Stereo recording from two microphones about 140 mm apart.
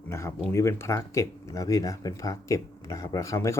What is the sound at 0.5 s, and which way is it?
Speech, 20° left (ahead or behind).